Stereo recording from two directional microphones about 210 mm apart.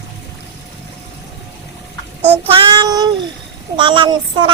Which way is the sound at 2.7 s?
20° right (ahead or behind).